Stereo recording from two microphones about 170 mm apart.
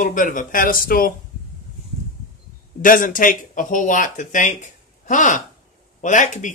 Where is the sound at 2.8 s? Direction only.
55° left (ahead or behind).